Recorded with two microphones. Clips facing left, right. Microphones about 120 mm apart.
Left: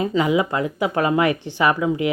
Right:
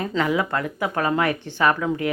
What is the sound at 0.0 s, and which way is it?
Speech, 10° left (ahead or behind).